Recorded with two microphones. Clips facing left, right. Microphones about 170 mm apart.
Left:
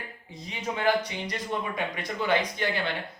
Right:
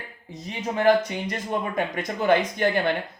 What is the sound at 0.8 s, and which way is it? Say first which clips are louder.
Speech: right 7 dB; 50° right (ahead or behind).